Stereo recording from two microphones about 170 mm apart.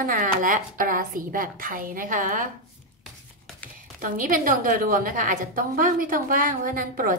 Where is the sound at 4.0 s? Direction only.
50° right (ahead or behind).